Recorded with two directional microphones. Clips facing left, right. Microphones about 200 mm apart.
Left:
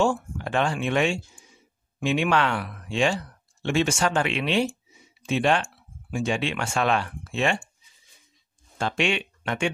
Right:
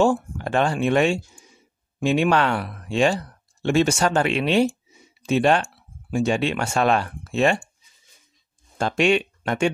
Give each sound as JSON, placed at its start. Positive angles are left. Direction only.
{"t": 0.0, "sound": "speech", "side_deg": -40}
{"t": 8.7, "sound": "speech", "side_deg": -40}